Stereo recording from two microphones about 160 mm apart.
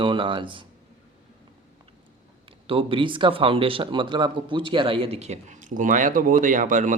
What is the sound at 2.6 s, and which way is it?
Speech, 35° right (ahead or behind).